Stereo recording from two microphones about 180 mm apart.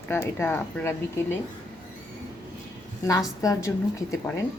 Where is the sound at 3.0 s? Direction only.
20° left (ahead or behind).